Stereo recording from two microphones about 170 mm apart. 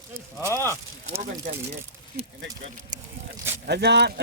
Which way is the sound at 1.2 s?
45° right (ahead or behind).